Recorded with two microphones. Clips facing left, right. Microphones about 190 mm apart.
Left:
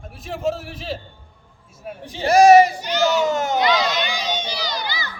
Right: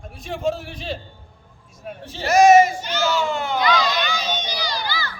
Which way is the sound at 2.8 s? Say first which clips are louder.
Left 3 dB; 15° left (ahead or behind).